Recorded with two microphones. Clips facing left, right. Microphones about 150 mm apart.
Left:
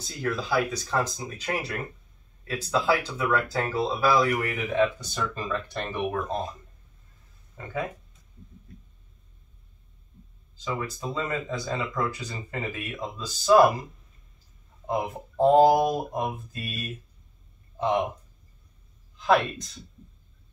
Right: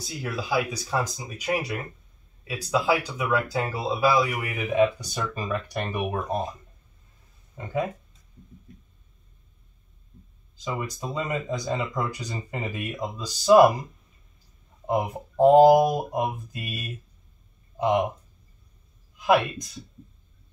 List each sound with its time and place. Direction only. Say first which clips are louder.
0.0 s speech: left 2 dB; 10° right (ahead or behind)
10.6 s speech: even; 15° right (ahead or behind)
14.9 s speech: right 3 dB; 15° right (ahead or behind)
19.1 s speech: right 1 dB; 10° right (ahead or behind)